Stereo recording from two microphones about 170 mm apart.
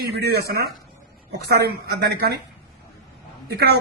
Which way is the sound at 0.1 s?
70° right (ahead or behind).